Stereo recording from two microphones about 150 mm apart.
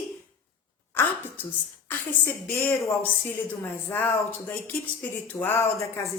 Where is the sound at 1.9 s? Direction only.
15° left (ahead or behind).